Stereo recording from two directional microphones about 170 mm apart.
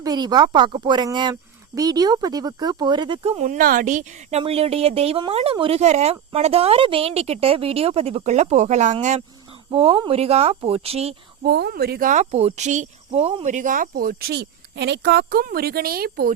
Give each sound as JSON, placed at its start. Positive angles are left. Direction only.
{"t": 0.0, "sound": "a woman's voice", "side_deg": -25}
{"t": 9.7, "sound": "a woman's voice", "side_deg": -35}
{"t": 11.4, "sound": "speech", "side_deg": -70}